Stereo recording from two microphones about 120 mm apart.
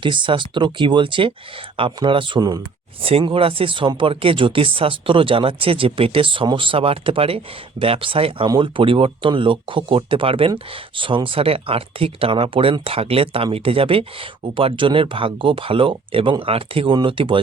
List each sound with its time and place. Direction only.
0.0 s speech: 40° right (ahead or behind)
3.0 s speech: 50° right (ahead or behind)